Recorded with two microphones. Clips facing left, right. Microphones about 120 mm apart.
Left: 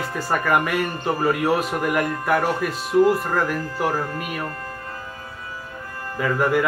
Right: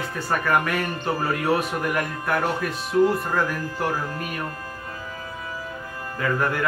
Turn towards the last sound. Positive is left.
turn(degrees=5)  # may be behind; listen again after turning